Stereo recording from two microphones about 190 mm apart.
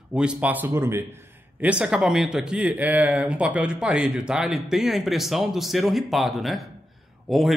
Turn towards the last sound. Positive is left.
turn(degrees=0)  # may be behind; listen again after turning